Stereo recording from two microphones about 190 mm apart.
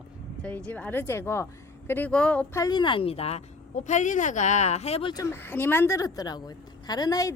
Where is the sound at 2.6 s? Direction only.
20° left (ahead or behind).